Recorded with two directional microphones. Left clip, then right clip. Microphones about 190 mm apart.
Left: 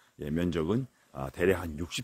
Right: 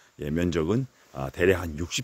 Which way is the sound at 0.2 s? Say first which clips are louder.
Right 4 dB; 15° right (ahead or behind).